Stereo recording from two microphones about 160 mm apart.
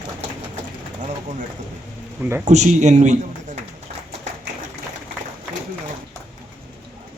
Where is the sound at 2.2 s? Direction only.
10° right (ahead or behind).